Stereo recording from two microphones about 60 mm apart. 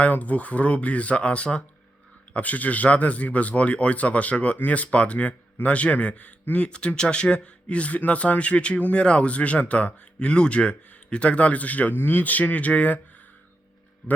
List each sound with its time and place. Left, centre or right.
0.0 s speech: left